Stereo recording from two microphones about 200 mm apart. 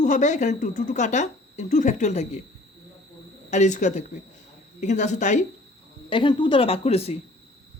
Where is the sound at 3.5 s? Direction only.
35° left (ahead or behind).